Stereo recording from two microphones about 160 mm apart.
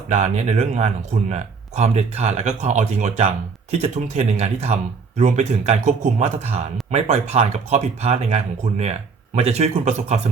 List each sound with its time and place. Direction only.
0.1 s speech: 45° right (ahead or behind)